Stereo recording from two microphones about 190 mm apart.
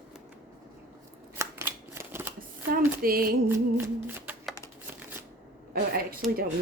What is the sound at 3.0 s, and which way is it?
Speech, 50° right (ahead or behind).